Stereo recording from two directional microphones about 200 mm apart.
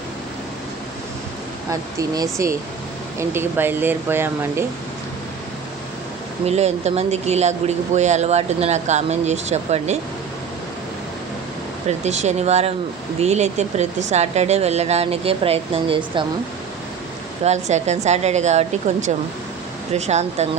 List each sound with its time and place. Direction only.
1.7 s speech: 15° right (ahead or behind)
6.4 s speech: 35° right (ahead or behind)
11.9 s speech: 35° right (ahead or behind)
17.4 s speech: 35° right (ahead or behind)